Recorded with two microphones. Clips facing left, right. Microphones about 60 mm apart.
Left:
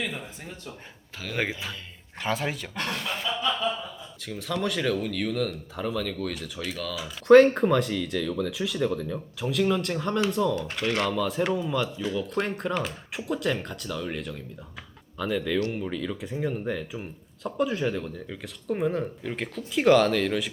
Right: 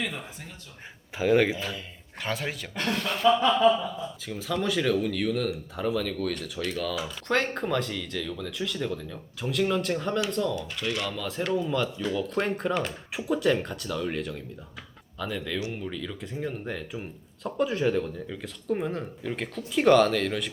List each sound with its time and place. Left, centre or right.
0.0 s speech: centre
1.2 s speech: right
1.5 s speech: centre
4.3 s speech: centre
10.8 s speech: left
11.1 s speech: centre